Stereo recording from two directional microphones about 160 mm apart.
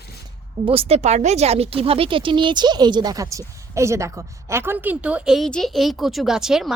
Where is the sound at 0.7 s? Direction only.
35° right (ahead or behind).